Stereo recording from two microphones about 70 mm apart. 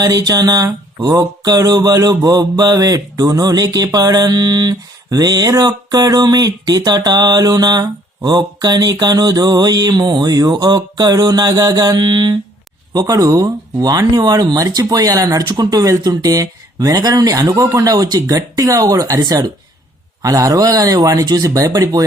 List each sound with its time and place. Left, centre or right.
0.0 s a sound: right
12.9 s speech: right
20.2 s speech: right